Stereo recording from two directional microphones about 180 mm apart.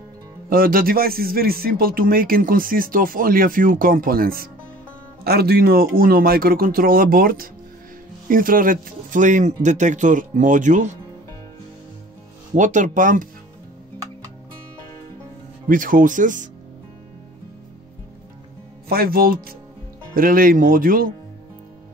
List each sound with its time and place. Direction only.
0.5 s a man's voice: 55° right (ahead or behind)
12.5 s speech: 45° right (ahead or behind)
15.7 s speech: 50° right (ahead or behind)
18.9 s a man's voice: 55° right (ahead or behind)